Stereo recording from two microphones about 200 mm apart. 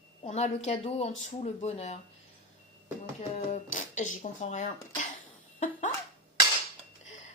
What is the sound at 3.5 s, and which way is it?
Speech, 40° left (ahead or behind).